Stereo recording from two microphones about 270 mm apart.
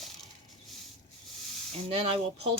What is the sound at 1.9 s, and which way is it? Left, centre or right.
Speech, right.